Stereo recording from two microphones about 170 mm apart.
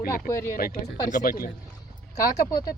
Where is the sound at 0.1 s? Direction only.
15° left (ahead or behind).